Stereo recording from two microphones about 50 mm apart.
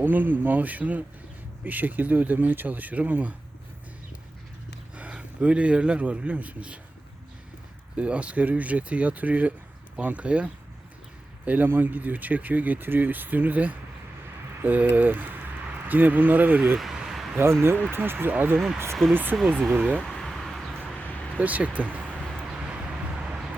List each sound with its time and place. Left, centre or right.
0.0 s speech: right
4.9 s a man's voice: right
7.9 s speech: right
16.7 s a sound: centre
17.3 s speech: right
20.1 s a sound: centre
20.3 s vehicle: centre
21.3 s speech: right
22.7 s a sound: centre